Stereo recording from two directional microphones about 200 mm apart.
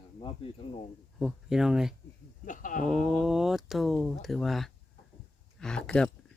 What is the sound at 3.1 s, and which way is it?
Music, centre (ahead or behind).